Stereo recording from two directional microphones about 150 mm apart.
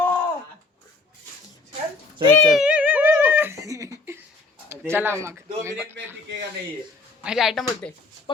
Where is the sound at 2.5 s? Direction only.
5° right (ahead or behind).